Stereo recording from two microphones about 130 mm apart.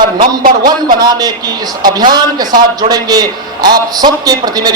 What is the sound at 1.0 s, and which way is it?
A man's voice, 30° right (ahead or behind).